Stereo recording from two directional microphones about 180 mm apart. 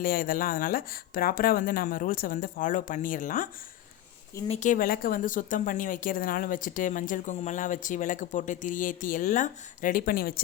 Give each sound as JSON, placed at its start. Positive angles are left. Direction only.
{"t": 0.0, "sound": "speech", "side_deg": 55}